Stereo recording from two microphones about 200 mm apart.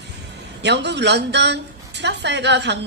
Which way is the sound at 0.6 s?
60° right (ahead or behind).